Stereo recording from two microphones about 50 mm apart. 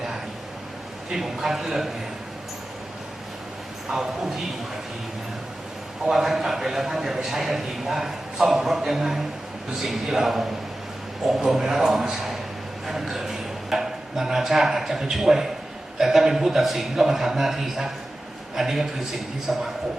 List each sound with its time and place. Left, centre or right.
1.1 s a man's voice: centre
3.8 s a man's voice: centre
6.1 s a man's voice: centre